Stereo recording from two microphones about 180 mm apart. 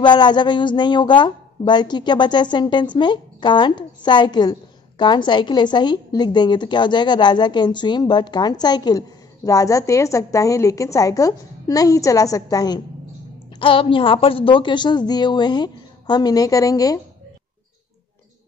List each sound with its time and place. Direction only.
0.0 s a woman's voice: 25° left (ahead or behind)